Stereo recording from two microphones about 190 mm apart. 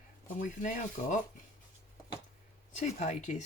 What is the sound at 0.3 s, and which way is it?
Speech, 40° left (ahead or behind).